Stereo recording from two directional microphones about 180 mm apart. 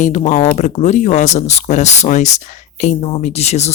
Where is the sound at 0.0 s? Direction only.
40° left (ahead or behind).